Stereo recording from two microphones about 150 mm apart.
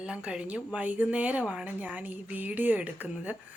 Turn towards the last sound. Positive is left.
turn(degrees=-10)  # may be behind; listen again after turning